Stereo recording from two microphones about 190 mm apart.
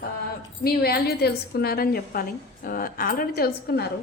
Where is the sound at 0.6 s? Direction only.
55° left (ahead or behind).